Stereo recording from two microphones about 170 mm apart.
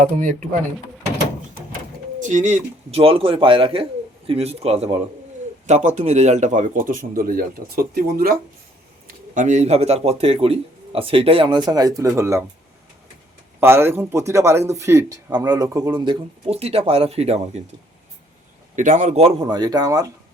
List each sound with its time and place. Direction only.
0.2 s speech: 50° right (ahead or behind)
2.1 s speech: 45° right (ahead or behind)
9.0 s speech: 50° right (ahead or behind); by 12.5 s 15° right (ahead or behind)
13.6 s speech: 15° right (ahead or behind); by 17.6 s 40° right (ahead or behind)
18.8 s speech: 45° right (ahead or behind); by 20.1 s 20° right (ahead or behind)